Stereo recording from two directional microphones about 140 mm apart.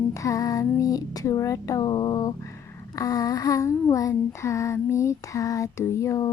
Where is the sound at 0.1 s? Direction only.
25° left (ahead or behind).